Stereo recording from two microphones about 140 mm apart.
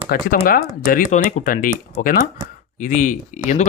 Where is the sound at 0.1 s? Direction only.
90° left.